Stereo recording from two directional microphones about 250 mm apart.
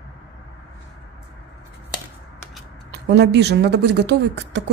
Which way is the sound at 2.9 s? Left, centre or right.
Right.